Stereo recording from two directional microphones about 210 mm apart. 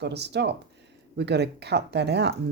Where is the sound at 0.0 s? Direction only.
55° right (ahead or behind).